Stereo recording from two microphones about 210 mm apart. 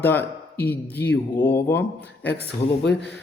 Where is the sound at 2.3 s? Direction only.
50° left (ahead or behind).